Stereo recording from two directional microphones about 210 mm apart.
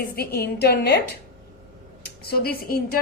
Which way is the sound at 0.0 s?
50° left (ahead or behind).